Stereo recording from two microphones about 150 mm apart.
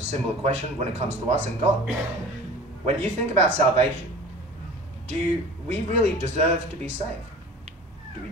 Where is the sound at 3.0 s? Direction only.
45° right (ahead or behind).